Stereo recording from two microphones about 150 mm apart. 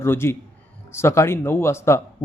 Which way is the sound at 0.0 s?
15° left (ahead or behind).